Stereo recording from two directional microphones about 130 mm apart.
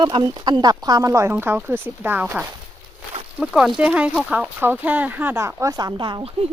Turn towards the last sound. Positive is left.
turn(degrees=-45)  # may be behind; listen again after turning